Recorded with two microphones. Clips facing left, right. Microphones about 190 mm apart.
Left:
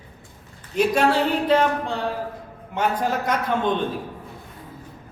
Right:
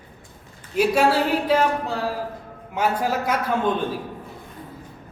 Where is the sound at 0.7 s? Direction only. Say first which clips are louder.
Right 1 dB; 5° right (ahead or behind).